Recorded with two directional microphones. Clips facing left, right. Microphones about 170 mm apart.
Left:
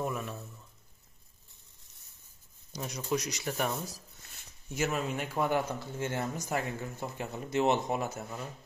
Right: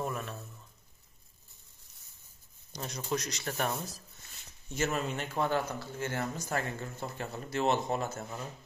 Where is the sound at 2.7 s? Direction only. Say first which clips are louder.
Left 2 dB; 10° left (ahead or behind).